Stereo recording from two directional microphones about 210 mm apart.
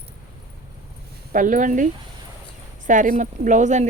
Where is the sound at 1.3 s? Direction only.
40° right (ahead or behind).